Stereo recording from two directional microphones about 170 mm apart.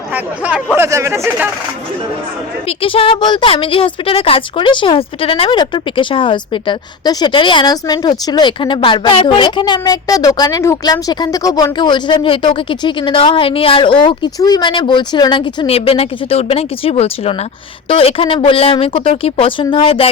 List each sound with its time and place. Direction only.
0.1 s speech: 10° right (ahead or behind)
2.6 s a woman's voice: 30° left (ahead or behind)